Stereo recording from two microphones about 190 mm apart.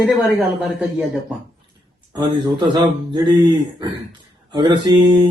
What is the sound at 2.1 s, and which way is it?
Speech, 25° right (ahead or behind).